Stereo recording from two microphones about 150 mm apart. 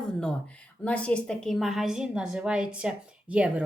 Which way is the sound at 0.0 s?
5° left (ahead or behind).